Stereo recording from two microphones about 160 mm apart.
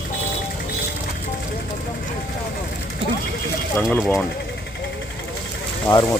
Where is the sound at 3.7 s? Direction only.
Centre (ahead or behind).